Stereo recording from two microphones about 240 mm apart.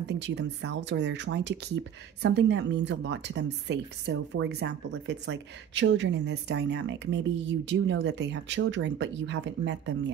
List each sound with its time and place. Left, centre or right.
0.0 s a woman's voice: right